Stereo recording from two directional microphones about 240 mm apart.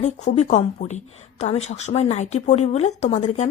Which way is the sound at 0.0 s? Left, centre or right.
Left.